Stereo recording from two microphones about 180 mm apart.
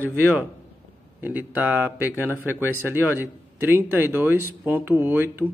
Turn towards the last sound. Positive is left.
turn(degrees=-10)  # may be behind; listen again after turning